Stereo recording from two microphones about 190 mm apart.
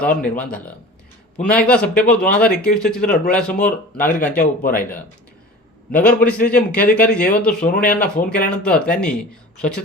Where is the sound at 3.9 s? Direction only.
45° left (ahead or behind).